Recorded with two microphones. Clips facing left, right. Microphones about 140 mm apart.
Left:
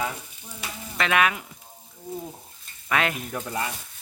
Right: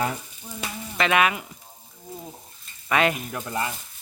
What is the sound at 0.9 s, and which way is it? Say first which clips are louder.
Speech: right 2 dB; 5° right (ahead or behind).